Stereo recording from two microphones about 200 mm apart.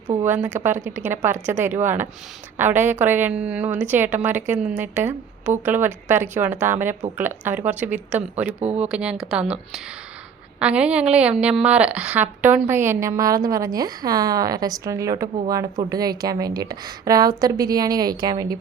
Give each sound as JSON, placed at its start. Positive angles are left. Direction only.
{"t": 0.3, "sound": "a woman's voice", "side_deg": -10}
{"t": 8.6, "sound": "speech", "side_deg": -35}
{"t": 8.9, "sound": "a woman's voice", "side_deg": -5}